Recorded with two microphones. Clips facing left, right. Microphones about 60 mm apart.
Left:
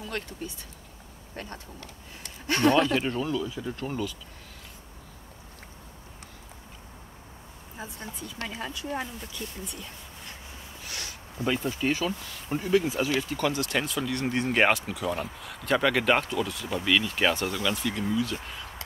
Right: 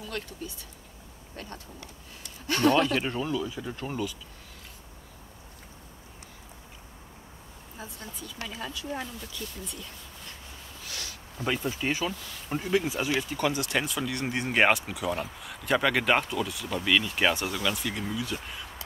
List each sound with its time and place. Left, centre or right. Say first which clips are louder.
1.3 s speech: left 2 dB; left
3.0 s speech: left 1 dB; centre
7.7 s speech: left 3 dB; left
10.9 s a sound: left 1 dB; left
11.8 s speech: left 2 dB; centre
17.6 s speech: left 1 dB; right
17.9 s speech: left 4 dB; centre